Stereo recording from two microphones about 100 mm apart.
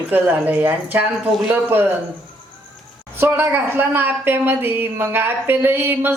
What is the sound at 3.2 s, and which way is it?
A woman's voice, 20° right (ahead or behind).